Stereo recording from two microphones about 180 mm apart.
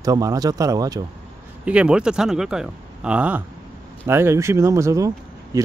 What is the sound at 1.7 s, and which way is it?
Speech, 5° right (ahead or behind).